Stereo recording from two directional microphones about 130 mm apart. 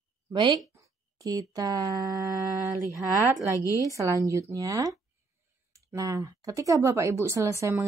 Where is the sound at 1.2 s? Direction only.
25° right (ahead or behind).